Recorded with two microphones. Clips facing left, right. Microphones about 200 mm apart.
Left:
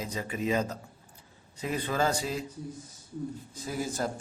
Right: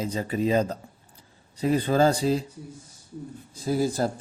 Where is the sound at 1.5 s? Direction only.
35° right (ahead or behind).